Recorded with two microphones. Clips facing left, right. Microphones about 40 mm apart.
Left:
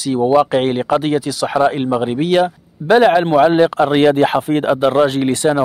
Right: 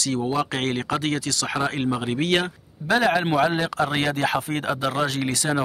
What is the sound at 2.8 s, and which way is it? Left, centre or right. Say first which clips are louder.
Speech: left 9 dB; left.